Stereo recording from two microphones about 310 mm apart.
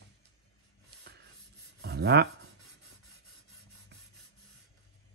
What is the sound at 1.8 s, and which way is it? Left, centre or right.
Rub, right.